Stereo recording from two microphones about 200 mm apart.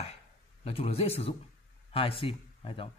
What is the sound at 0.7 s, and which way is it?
Speech, 30° left (ahead or behind).